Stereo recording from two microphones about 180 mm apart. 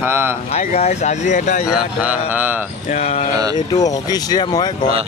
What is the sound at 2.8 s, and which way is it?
Speech, 40° left (ahead or behind).